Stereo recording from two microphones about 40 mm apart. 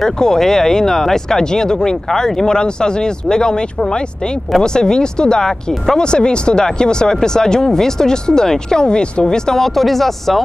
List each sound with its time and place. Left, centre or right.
0.0 s speech: centre
9.6 s speech: centre